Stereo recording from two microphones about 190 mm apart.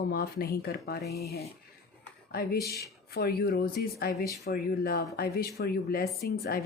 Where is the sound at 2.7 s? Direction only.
55° left (ahead or behind).